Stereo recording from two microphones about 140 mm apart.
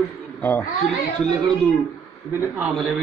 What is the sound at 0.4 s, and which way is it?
Speech, 10° left (ahead or behind).